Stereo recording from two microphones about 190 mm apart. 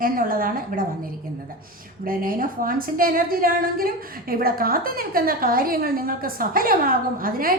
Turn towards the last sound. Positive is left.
turn(degrees=-50)  # may be behind; listen again after turning